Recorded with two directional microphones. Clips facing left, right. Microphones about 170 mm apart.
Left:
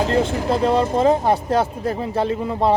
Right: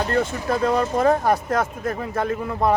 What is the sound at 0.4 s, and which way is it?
Speech, 25° left (ahead or behind).